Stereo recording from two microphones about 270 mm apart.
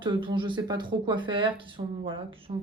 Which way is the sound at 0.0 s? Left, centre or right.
Centre.